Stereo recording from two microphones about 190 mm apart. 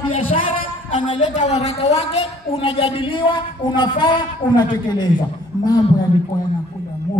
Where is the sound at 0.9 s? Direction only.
25° left (ahead or behind).